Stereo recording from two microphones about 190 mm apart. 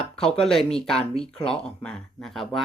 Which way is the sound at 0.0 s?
5° left (ahead or behind).